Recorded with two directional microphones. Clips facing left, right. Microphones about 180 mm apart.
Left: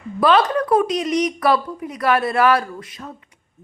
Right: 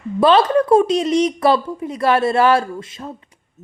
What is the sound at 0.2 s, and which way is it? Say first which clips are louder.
Speech: right 3 dB; 25° right (ahead or behind).